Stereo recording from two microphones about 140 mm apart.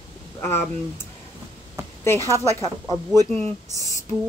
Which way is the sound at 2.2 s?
20° right (ahead or behind).